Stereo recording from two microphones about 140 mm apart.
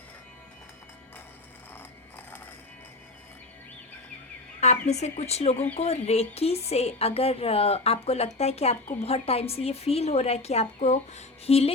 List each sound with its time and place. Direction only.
4.6 s a woman's voice: 55° left (ahead or behind)